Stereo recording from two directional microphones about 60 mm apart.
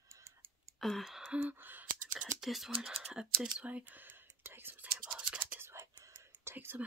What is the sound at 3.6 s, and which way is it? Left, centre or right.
Whispering, right.